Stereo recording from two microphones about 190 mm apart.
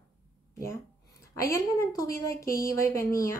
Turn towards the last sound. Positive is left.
turn(degrees=15)  # may be behind; listen again after turning